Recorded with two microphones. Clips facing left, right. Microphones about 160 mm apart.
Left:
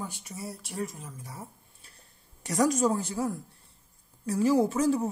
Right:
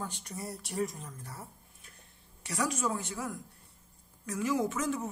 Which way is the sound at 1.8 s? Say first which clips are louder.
Even; 35° left (ahead or behind).